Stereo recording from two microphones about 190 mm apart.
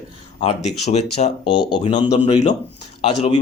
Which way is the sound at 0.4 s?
35° left (ahead or behind).